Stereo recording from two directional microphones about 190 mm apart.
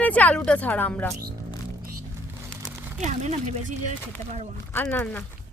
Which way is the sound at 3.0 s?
35° right (ahead or behind).